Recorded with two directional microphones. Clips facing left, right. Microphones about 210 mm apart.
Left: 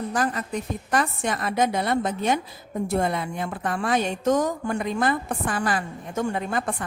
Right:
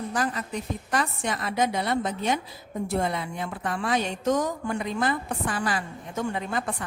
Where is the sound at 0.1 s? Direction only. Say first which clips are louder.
Left 2 dB; 50° left (ahead or behind).